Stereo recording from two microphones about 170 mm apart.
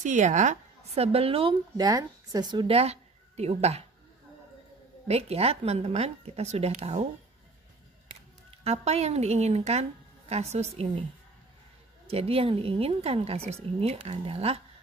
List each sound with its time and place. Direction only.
0.0 s speech: 45° right (ahead or behind)
5.0 s speech: 35° right (ahead or behind)
8.5 s speech: 40° right (ahead or behind)
12.1 s speech: 35° right (ahead or behind)